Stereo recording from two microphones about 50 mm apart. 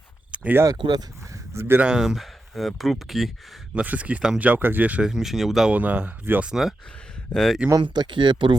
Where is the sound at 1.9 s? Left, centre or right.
Centre.